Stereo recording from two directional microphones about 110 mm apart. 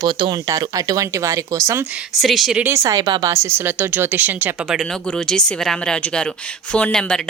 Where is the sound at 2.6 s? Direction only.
25° right (ahead or behind).